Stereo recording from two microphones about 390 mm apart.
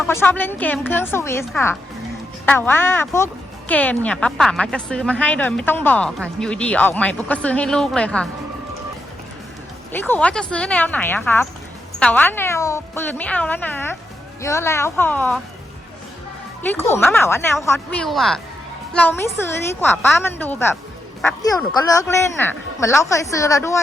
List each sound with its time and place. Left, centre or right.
0.0 s a woman's voice: centre
9.9 s a woman's voice: centre
16.6 s a woman's voice: centre